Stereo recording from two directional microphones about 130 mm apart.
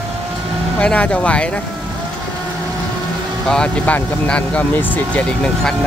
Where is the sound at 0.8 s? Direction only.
10° left (ahead or behind).